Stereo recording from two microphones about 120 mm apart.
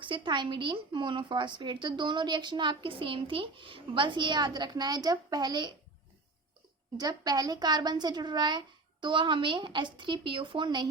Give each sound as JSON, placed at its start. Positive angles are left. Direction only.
{"t": 0.0, "sound": "a woman's voice", "side_deg": -45}
{"t": 6.9, "sound": "a woman's voice", "side_deg": -35}